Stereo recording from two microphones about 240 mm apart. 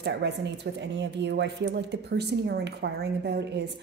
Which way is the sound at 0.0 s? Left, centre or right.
Right.